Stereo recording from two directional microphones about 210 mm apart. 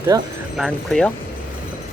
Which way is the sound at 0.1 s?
20° right (ahead or behind).